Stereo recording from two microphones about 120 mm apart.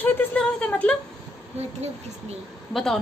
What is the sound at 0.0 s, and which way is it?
Speech, 15° left (ahead or behind).